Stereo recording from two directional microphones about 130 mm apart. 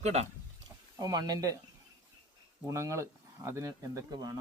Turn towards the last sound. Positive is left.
turn(degrees=-30)  # may be behind; listen again after turning